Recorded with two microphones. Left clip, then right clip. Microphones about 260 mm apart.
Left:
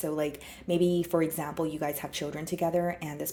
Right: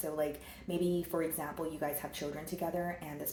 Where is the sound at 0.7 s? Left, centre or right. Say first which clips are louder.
Left 8 dB; left.